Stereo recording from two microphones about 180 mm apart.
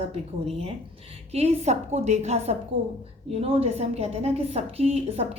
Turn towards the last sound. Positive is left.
turn(degrees=-35)  # may be behind; listen again after turning